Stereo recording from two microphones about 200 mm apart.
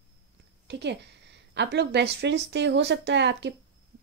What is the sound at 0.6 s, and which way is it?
A woman's voice, 60° right (ahead or behind).